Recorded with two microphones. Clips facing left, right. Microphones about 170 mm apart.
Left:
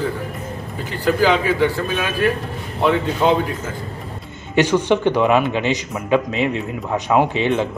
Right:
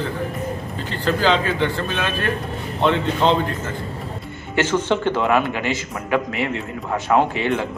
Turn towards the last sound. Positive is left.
turn(degrees=20)  # may be behind; listen again after turning